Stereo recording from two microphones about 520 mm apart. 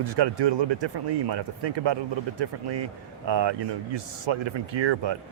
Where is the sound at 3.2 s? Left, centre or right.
Right.